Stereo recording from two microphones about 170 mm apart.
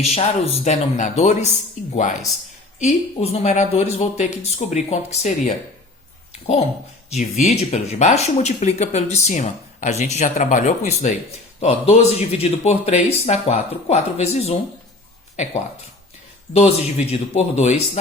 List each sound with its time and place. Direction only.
0.0 s speech: 40° left (ahead or behind)
2.7 s speech: 40° left (ahead or behind)
7.1 s speech: 40° left (ahead or behind)
16.6 s speech: 40° left (ahead or behind)